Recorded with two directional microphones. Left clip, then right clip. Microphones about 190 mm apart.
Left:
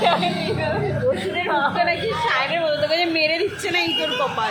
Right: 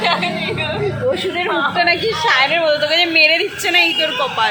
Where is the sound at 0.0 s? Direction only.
30° left (ahead or behind).